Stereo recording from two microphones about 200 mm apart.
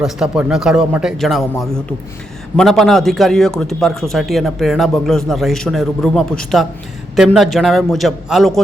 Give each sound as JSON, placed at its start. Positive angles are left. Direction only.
{"t": 0.0, "sound": "a man's voice", "side_deg": -5}